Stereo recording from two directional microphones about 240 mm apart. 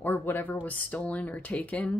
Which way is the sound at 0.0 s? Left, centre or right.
Centre.